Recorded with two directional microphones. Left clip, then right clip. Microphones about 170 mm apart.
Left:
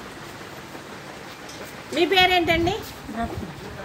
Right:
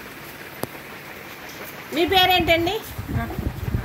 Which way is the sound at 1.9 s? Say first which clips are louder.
Right 1 dB; 70° right (ahead or behind).